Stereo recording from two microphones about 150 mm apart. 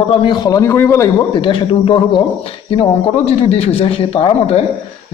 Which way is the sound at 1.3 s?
35° left (ahead or behind).